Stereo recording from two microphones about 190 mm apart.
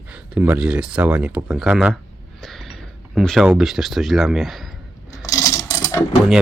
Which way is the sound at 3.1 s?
Centre (ahead or behind).